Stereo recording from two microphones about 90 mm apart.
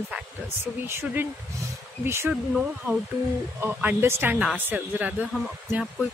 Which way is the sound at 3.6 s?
20° right (ahead or behind).